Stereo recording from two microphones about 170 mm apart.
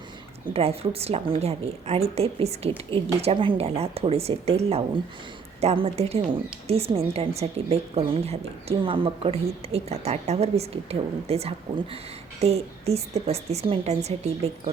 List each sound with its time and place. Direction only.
0.5 s a woman's voice: 35° right (ahead or behind)